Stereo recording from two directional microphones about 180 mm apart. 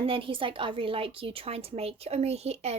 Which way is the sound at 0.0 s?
30° right (ahead or behind).